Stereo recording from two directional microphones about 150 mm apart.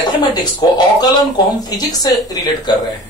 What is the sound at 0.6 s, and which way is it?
Speech, 30° left (ahead or behind).